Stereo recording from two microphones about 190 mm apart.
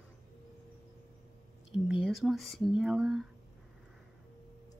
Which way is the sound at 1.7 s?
Centre (ahead or behind).